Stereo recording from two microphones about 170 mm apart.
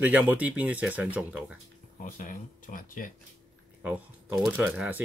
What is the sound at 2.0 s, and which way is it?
Speech, 50° left (ahead or behind).